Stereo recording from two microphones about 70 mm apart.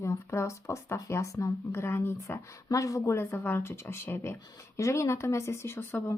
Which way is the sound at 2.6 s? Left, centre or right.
Left.